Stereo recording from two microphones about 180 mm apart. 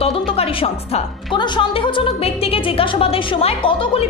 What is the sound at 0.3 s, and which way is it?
A woman's voice, 30° left (ahead or behind).